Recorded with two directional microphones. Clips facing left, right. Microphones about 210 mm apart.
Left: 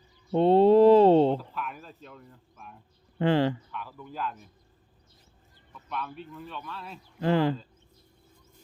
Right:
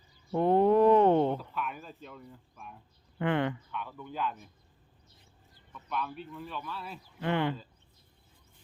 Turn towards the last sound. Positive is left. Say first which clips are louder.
# left 6 dB
turn(degrees=35)  # may be behind; listen again after turning